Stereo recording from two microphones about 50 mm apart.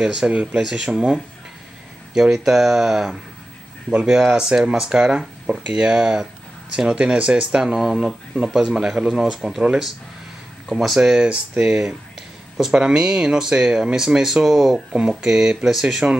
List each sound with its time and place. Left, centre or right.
0.0 s speech: centre
10.7 s speech: centre
11.0 s speech: centre